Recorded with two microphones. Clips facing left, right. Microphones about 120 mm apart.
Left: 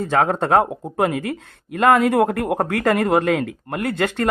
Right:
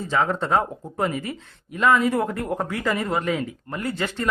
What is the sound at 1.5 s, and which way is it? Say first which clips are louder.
A man's voice: left 4 dB; 60° left (ahead or behind).